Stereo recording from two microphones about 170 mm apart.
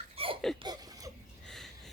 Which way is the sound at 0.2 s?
35° right (ahead or behind).